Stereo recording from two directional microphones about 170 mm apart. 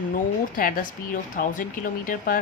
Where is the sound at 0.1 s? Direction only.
55° left (ahead or behind).